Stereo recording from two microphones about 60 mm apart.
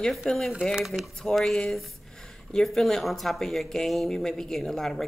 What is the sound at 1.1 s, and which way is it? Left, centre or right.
Speech, centre.